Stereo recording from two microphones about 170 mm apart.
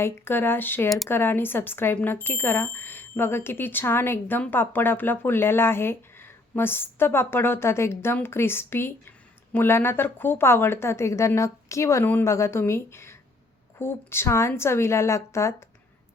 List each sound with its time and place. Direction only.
0.0 s speech: 15° left (ahead or behind)